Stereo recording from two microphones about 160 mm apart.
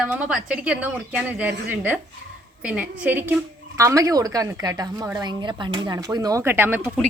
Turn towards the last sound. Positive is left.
turn(degrees=-15)  # may be behind; listen again after turning